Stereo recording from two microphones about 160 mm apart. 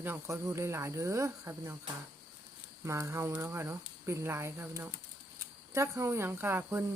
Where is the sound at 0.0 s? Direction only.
15° right (ahead or behind).